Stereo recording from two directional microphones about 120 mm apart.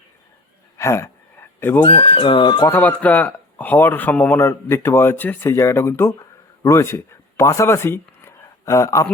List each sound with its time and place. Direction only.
0.8 s a sound: 25° left (ahead or behind)
1.8 s speech: 45° left (ahead or behind)
2.6 s speech: 15° left (ahead or behind)